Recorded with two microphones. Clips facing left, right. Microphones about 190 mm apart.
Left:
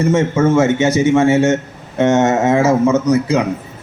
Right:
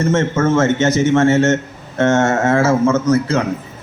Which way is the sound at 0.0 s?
15° left (ahead or behind).